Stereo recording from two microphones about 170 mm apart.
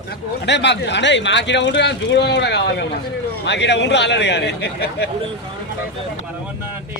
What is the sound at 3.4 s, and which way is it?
Speech, 90° left.